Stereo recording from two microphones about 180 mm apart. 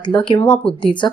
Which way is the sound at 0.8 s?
25° left (ahead or behind).